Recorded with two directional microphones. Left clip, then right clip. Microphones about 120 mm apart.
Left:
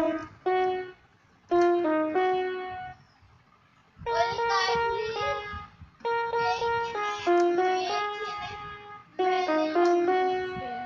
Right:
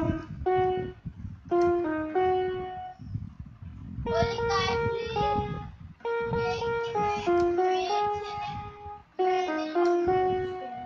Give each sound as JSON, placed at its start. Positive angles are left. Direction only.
{"t": 0.0, "sound": "music", "side_deg": 30}
{"t": 4.0, "sound": "child singing", "side_deg": 35}
{"t": 6.0, "sound": "music", "side_deg": 35}
{"t": 9.1, "sound": "music", "side_deg": 35}